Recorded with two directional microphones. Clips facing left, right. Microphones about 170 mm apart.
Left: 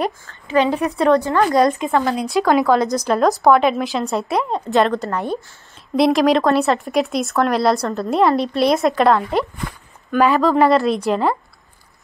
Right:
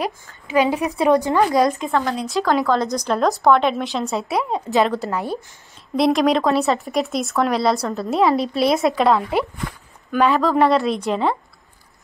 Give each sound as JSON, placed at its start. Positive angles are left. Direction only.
{"t": 0.0, "sound": "a woman's voice", "side_deg": -10}
{"t": 1.5, "sound": "speech", "side_deg": 0}